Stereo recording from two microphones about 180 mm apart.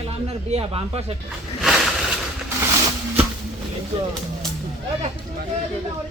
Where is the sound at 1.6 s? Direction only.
Centre (ahead or behind).